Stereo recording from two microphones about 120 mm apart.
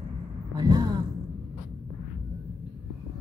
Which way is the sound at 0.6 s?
30° right (ahead or behind).